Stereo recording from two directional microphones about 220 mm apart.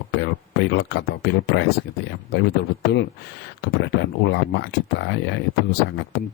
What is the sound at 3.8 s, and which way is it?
Speech, 50° left (ahead or behind).